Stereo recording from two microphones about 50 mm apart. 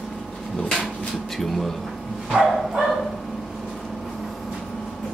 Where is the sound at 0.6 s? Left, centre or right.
Left.